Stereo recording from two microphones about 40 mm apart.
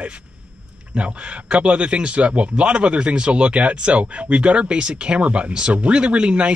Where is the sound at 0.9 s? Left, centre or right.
Right.